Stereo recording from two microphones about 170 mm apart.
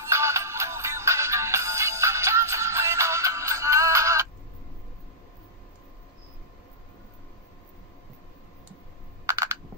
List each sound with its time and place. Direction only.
0.0 s music: 15° right (ahead or behind)
9.2 s camera: 20° right (ahead or behind)